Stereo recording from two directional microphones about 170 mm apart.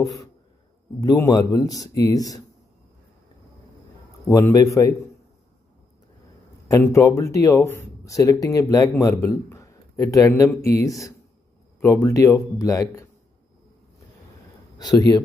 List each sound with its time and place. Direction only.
0.0 s speech: 20° left (ahead or behind)
4.3 s a man's voice: 20° left (ahead or behind)
6.9 s speech: 20° left (ahead or behind)
14.8 s speech: 25° left (ahead or behind)